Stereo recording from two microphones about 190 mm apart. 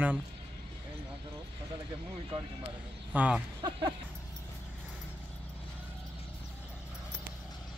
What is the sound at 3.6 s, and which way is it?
Music, 25° right (ahead or behind).